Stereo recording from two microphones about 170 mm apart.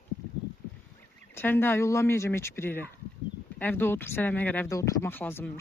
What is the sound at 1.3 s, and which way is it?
Speech, 15° left (ahead or behind).